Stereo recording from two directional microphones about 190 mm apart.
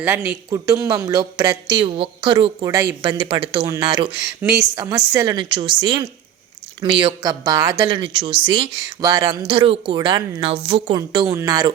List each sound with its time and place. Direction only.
0.0 s speech: 10° right (ahead or behind); by 4.1 s 25° right (ahead or behind)
4.4 s speech: 15° right (ahead or behind); by 10.9 s 30° right (ahead or behind)
10.9 s speech: 20° right (ahead or behind)